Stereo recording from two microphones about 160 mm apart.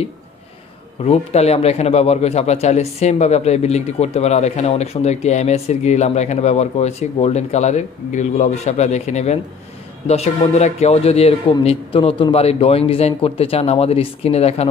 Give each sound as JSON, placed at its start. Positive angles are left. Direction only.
{"t": 1.0, "sound": "speech", "side_deg": 40}